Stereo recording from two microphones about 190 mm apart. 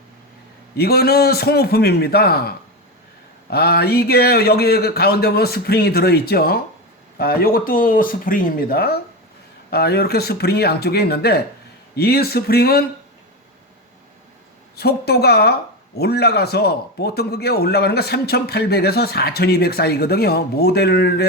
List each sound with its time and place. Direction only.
0.8 s a man's voice: 55° left (ahead or behind)
3.5 s a man's voice: 55° left (ahead or behind)
14.8 s a man's voice: 55° left (ahead or behind)